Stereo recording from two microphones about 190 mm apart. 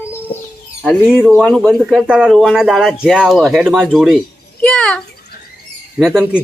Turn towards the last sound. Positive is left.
turn(degrees=-5)  # may be behind; listen again after turning